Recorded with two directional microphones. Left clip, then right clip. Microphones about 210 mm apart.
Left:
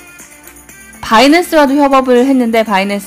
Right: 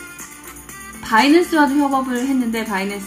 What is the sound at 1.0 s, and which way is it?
Speech, 50° left (ahead or behind).